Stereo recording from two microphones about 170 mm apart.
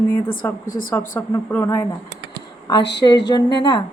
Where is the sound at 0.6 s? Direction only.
55° left (ahead or behind).